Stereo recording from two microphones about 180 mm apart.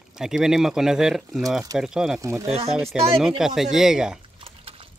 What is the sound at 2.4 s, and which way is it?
Speech, 35° right (ahead or behind).